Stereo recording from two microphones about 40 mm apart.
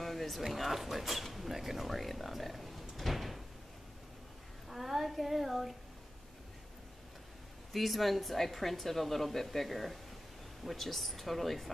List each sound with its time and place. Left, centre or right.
0.0 s speech: centre
4.6 s a child's voice: centre
7.7 s speech: centre